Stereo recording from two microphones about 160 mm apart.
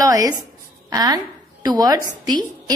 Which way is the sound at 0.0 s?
20° right (ahead or behind).